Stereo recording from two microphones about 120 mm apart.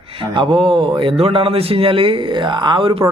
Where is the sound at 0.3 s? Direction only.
45° right (ahead or behind).